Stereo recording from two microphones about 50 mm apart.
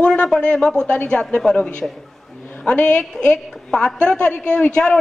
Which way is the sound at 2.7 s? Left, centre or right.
Left.